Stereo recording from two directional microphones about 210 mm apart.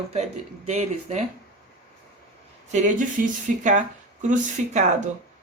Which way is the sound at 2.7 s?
35° right (ahead or behind).